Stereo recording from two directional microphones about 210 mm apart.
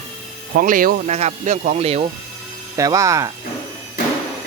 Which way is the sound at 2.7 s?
15° right (ahead or behind).